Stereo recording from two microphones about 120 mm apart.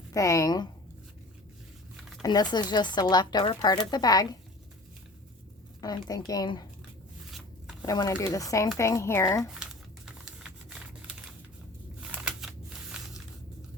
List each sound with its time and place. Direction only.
0.1 s speech: 25° left (ahead or behind)
2.2 s speech: 35° left (ahead or behind)
5.8 s speech: 35° left (ahead or behind)
7.3 s zipper: centre (ahead or behind)
7.8 s speech: 30° left (ahead or behind)
10.1 s typing: 5° right (ahead or behind)
11.9 s a sound: 10° right (ahead or behind)